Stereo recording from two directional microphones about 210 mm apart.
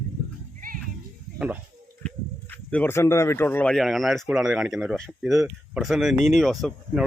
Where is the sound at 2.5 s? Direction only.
10° left (ahead or behind).